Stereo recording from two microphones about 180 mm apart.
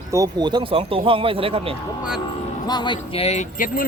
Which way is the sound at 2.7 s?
25° left (ahead or behind).